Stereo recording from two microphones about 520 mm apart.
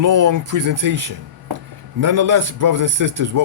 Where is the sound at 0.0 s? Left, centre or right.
Right.